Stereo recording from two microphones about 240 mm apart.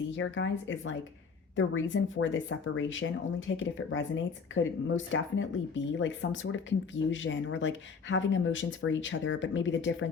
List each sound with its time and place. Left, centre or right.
0.2 s speech: left